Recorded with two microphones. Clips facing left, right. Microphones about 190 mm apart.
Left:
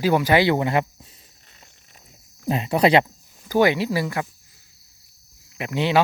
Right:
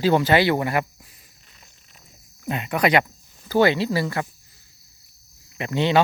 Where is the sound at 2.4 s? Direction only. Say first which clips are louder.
Left 3 dB; 30° left (ahead or behind).